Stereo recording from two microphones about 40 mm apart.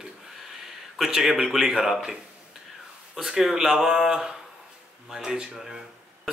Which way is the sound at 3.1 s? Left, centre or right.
Centre.